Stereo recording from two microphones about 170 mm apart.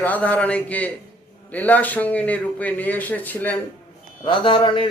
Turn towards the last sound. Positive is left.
turn(degrees=30)  # may be behind; listen again after turning